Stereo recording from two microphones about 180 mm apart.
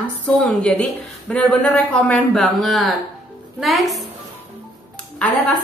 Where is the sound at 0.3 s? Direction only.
5° left (ahead or behind).